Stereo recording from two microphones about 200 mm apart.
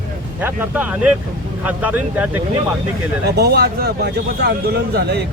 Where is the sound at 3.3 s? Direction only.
55° right (ahead or behind).